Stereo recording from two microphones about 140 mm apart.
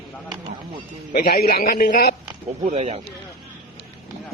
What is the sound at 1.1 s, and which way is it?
A man's voice, 85° left.